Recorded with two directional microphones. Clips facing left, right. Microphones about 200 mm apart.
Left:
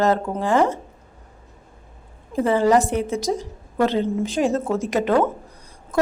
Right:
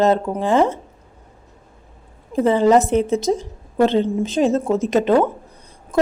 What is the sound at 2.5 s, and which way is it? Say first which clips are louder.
A woman's voice: right 3 dB; 20° right (ahead or behind).